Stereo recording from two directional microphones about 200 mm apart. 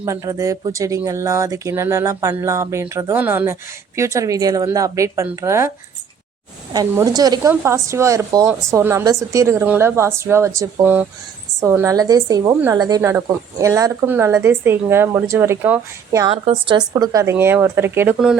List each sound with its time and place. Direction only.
0.0 s speech: 15° right (ahead or behind)
6.7 s speech: 20° right (ahead or behind)
16.3 s a woman's voice: 25° right (ahead or behind); by 18.3 s 5° right (ahead or behind)